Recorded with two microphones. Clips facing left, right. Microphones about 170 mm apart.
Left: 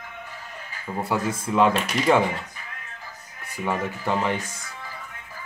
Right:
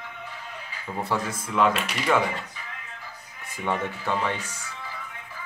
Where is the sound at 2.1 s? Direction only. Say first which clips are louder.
Left 4 dB; 25° left (ahead or behind).